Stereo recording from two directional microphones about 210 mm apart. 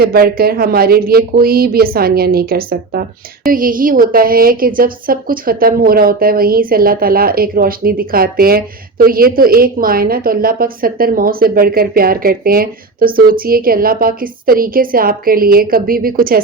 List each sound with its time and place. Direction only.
0.0 s a woman's voice: 45° right (ahead or behind)